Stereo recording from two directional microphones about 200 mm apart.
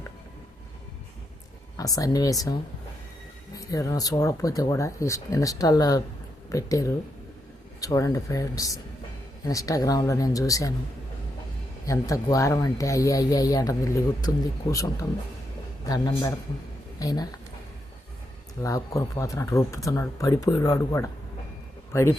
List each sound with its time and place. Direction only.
1.7 s speech: 15° left (ahead or behind)
11.9 s speech: 15° left (ahead or behind)
18.6 s speech: 15° left (ahead or behind)